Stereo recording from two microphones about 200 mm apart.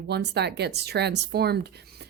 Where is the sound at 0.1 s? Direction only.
55° right (ahead or behind).